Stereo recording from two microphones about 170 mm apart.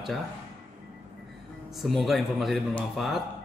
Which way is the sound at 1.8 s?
Centre (ahead or behind).